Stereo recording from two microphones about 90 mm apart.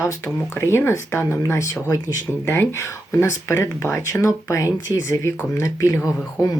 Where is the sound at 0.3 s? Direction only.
25° left (ahead or behind).